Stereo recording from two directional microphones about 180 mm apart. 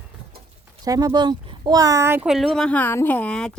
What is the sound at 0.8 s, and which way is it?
Speech, 20° right (ahead or behind).